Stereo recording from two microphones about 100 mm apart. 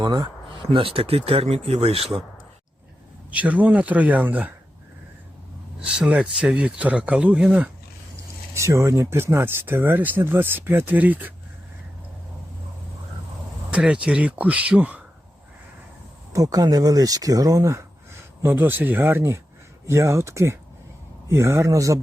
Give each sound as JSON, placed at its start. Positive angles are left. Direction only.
{"t": 0.0, "sound": "speech", "side_deg": -45}
{"t": 0.6, "sound": "speech", "side_deg": -65}
{"t": 3.3, "sound": "speech", "side_deg": -15}
{"t": 6.0, "sound": "speech", "side_deg": -10}
{"t": 8.5, "sound": "speech", "side_deg": -30}
{"t": 13.7, "sound": "speech", "side_deg": -10}
{"t": 16.3, "sound": "speech", "side_deg": -35}